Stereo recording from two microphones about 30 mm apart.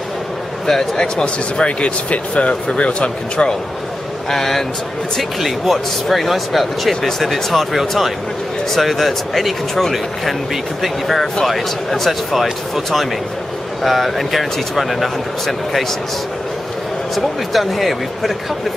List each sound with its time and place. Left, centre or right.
0.9 s speech: left
2.0 s speech: left
2.8 s speech: left
4.3 s speech: centre
7.0 s speech: centre
8.7 s speech: centre
12.1 s speech: centre
17.1 s speech: centre